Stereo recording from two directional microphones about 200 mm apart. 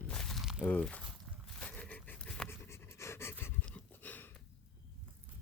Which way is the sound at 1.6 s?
5° left (ahead or behind).